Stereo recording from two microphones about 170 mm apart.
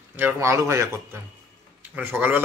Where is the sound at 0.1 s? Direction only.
15° right (ahead or behind).